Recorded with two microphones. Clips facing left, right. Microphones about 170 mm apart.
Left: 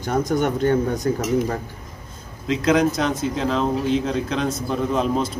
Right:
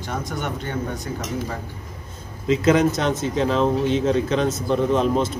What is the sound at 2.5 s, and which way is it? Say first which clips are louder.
Speech: right 1 dB; 5° right (ahead or behind).